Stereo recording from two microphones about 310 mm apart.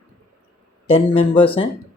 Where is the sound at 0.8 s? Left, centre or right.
Centre.